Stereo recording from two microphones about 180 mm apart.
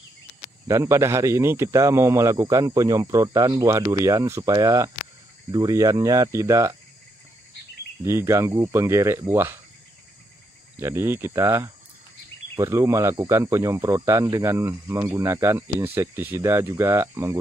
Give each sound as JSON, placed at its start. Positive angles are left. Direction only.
{"t": 0.7, "sound": "speech", "side_deg": -15}
{"t": 8.0, "sound": "speech", "side_deg": -15}
{"t": 10.8, "sound": "speech", "side_deg": -15}